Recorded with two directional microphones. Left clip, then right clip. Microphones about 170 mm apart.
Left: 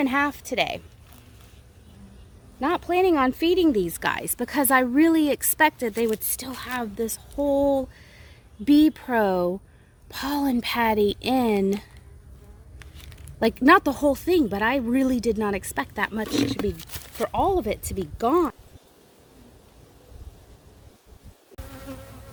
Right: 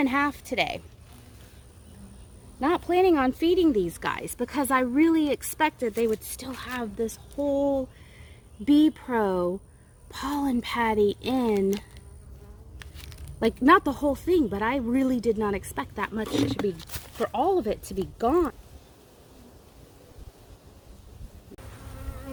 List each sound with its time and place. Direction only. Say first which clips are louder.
0.0 s speech: left 2 dB; 50° left (ahead or behind)
2.6 s speech: left 1 dB; 45° left (ahead or behind); by 7.9 s 60° left (ahead or behind)
8.6 s speech: left 2 dB; 50° left (ahead or behind)
12.8 s a sound: right 1 dB; 5° left (ahead or behind)
13.4 s speech: left 2 dB; 55° left (ahead or behind)
18.2 s speech: left 2 dB; 60° left (ahead or behind)